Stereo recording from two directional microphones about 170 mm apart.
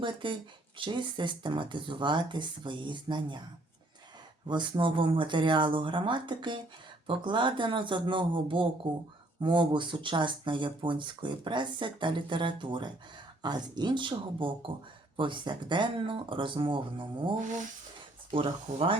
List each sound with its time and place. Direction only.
0.0 s speech: 30° right (ahead or behind)
4.4 s speech: 25° right (ahead or behind)